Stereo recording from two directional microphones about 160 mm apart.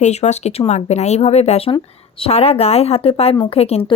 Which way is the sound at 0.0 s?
45° left (ahead or behind).